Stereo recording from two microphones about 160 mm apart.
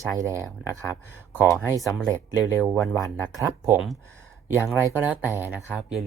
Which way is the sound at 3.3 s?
20° right (ahead or behind).